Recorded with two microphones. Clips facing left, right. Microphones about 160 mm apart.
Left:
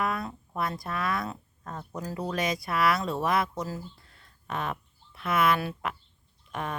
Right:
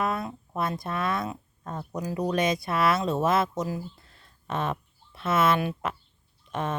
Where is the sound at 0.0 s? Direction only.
20° right (ahead or behind).